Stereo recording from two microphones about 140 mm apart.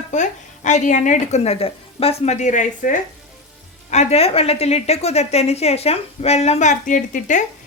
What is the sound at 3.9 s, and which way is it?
A woman's voice, 50° left (ahead or behind).